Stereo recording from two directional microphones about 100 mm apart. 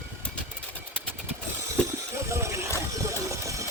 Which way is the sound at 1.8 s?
10° left (ahead or behind).